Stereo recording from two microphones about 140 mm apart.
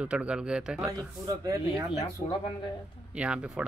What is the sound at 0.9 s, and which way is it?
Speech, 25° right (ahead or behind).